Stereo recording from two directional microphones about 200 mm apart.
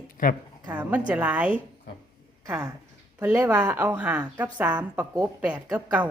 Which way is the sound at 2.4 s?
15° right (ahead or behind).